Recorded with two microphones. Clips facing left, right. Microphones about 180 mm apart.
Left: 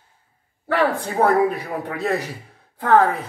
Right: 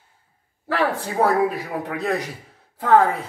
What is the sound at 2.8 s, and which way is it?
Speech, 10° right (ahead or behind).